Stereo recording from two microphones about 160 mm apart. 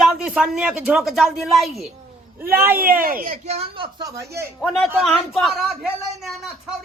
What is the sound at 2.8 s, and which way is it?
Speech, 65° right (ahead or behind).